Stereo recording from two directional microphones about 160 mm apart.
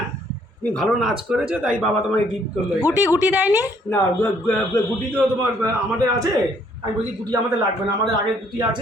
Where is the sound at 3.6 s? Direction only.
15° left (ahead or behind).